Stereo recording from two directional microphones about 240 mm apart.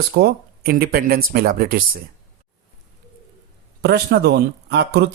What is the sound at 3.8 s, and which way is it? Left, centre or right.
A man's voice, right.